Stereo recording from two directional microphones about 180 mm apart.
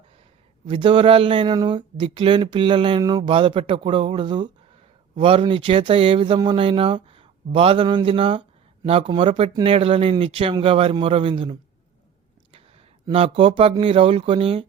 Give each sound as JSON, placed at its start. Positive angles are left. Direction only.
{"t": 0.7, "sound": "speech", "side_deg": -30}
{"t": 13.1, "sound": "speech", "side_deg": -30}